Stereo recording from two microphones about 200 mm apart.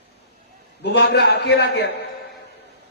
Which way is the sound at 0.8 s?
55° left (ahead or behind).